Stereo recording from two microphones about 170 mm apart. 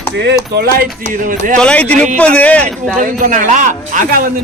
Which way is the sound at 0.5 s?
70° right (ahead or behind).